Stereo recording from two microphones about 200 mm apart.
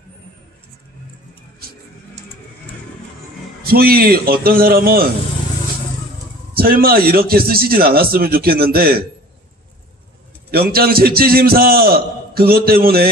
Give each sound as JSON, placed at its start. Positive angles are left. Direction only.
{"t": 3.6, "sound": "a man's voice", "side_deg": -50}
{"t": 6.5, "sound": "a man's voice", "side_deg": -50}
{"t": 10.5, "sound": "a man's voice", "side_deg": -50}